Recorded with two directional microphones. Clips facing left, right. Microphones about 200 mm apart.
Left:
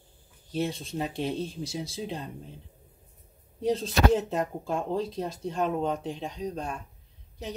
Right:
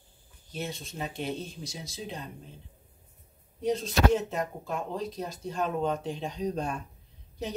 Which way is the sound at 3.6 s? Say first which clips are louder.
Left 1 dB; 30° left (ahead or behind).